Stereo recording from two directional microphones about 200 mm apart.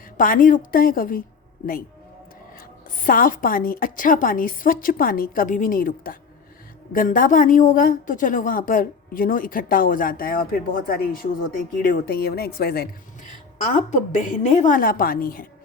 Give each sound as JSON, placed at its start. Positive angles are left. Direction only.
{"t": 0.2, "sound": "a woman's voice", "side_deg": 45}
{"t": 2.6, "sound": "a woman's voice", "side_deg": 45}
{"t": 13.7, "sound": "a woman's voice", "side_deg": 40}